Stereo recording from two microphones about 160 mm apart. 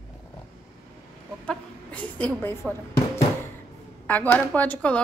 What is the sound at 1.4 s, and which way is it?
Speech, 10° left (ahead or behind).